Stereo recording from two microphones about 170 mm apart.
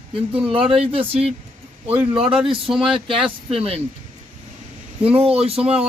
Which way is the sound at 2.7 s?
5° right (ahead or behind).